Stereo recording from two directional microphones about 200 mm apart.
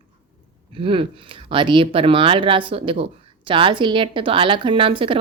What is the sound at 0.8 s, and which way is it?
Speech, 25° right (ahead or behind).